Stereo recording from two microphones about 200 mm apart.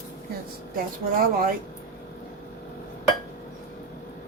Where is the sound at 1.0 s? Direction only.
45° right (ahead or behind).